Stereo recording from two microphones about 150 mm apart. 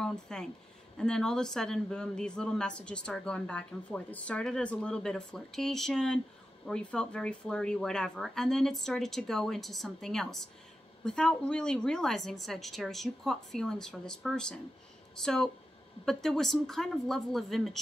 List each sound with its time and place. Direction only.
0.0 s speech: 5° left (ahead or behind)